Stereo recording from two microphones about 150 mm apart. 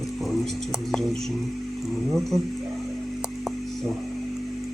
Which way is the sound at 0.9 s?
Centre (ahead or behind).